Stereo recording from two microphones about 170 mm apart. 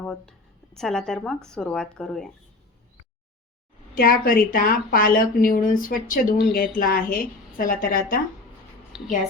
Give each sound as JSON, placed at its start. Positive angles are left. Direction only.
{"t": 0.1, "sound": "speech", "side_deg": 5}
{"t": 3.9, "sound": "speech", "side_deg": 60}
{"t": 8.9, "sound": "a woman's voice", "side_deg": 0}